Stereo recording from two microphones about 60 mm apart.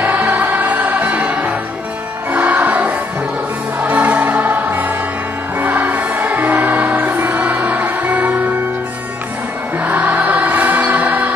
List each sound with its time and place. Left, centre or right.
0.0 s music: right
9.8 s music: right